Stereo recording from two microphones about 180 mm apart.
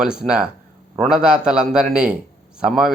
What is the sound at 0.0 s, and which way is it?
Speech, 5° right (ahead or behind).